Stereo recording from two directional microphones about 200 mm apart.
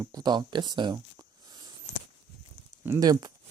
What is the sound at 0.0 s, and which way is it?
Speech, 20° right (ahead or behind).